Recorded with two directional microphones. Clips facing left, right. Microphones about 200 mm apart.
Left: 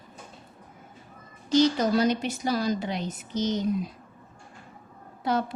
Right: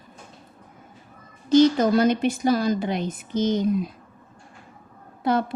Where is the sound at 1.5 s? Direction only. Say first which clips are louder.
Right 5 dB; 50° right (ahead or behind).